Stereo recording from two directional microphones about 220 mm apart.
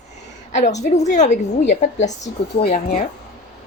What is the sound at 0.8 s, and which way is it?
A woman's voice, 30° left (ahead or behind).